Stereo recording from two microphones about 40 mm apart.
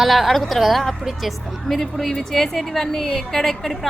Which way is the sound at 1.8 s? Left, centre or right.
Centre.